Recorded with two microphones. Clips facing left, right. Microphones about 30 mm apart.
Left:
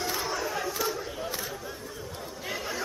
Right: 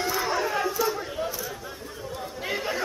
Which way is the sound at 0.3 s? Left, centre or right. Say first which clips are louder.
Right 5 dB; right.